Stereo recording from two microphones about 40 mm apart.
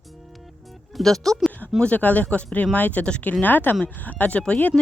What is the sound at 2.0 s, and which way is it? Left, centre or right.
Speech, left.